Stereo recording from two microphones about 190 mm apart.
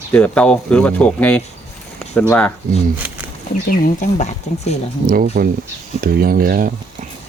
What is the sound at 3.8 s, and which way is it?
Speech, 40° left (ahead or behind).